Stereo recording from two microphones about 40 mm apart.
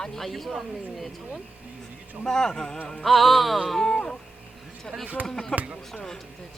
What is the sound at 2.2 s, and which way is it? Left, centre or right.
Speech, centre.